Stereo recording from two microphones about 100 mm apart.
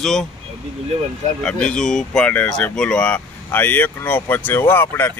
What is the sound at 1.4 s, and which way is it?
Speech, 10° left (ahead or behind).